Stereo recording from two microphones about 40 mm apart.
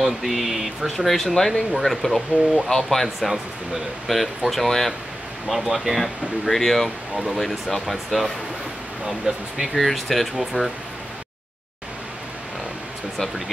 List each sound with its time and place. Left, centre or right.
0.2 s speech: centre
5.5 s speech: centre
9.8 s speech: centre